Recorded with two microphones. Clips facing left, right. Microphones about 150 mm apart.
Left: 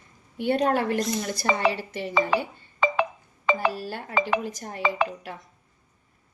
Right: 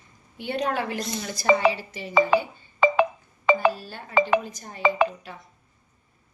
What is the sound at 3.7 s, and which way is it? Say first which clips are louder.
Speech: left 4 dB; 85° left.